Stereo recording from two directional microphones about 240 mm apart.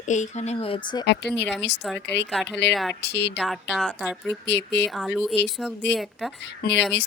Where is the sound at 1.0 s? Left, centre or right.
Left.